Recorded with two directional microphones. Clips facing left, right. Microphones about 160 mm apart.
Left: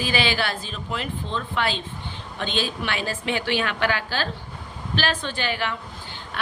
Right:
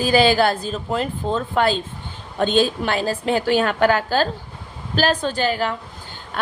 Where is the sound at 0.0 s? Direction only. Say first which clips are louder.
Right 9 dB; 40° right (ahead or behind).